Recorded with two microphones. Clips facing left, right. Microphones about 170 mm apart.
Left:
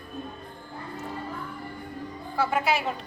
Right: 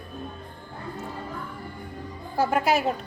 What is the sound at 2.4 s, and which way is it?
Speech, 45° right (ahead or behind).